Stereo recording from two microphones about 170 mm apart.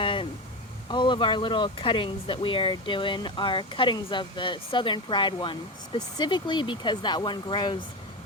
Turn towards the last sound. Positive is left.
turn(degrees=25)  # may be behind; listen again after turning